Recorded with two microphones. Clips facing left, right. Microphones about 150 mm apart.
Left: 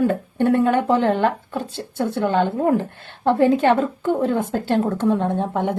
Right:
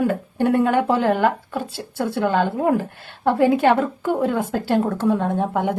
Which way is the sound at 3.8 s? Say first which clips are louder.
Left 1 dB; 25° left (ahead or behind).